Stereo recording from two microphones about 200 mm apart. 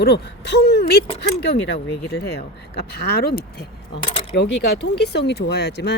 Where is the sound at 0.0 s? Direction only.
55° left (ahead or behind).